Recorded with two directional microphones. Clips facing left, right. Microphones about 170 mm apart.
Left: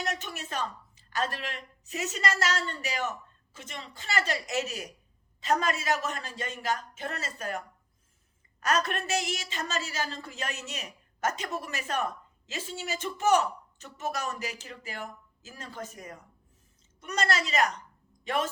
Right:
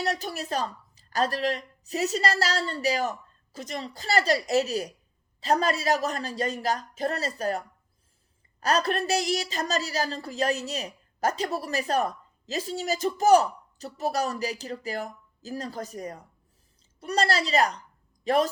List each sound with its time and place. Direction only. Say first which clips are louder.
0.0 s a woman's voice: right 5 dB; 35° right (ahead or behind)
8.6 s a woman's voice: right 4 dB; 35° right (ahead or behind)